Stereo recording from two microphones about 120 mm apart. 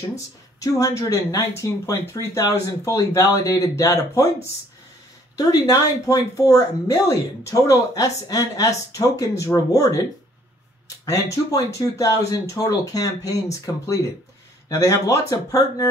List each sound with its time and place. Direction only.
0.6 s speech: 30° left (ahead or behind)
5.4 s speech: 30° left (ahead or behind)
11.5 s speech: 30° left (ahead or behind)